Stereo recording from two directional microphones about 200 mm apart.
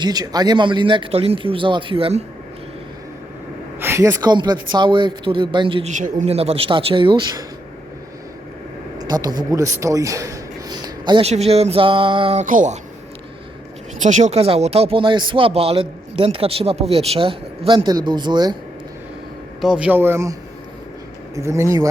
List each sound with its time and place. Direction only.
0.0 s speech: 20° right (ahead or behind)
3.8 s speech: 10° right (ahead or behind)
5.9 s speech: 40° right (ahead or behind)
9.0 s speech: 20° right (ahead or behind); by 12.8 s 40° right (ahead or behind)
14.0 s speech: 35° right (ahead or behind); by 18.5 s 20° right (ahead or behind)
19.6 s a man's voice: 5° right (ahead or behind)
21.3 s a man's voice: 15° right (ahead or behind)